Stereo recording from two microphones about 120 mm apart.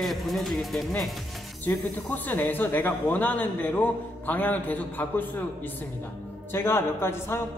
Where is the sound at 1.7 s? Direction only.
20° left (ahead or behind).